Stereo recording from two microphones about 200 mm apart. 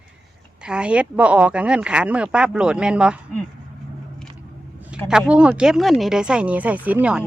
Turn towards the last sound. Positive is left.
turn(degrees=-5)  # may be behind; listen again after turning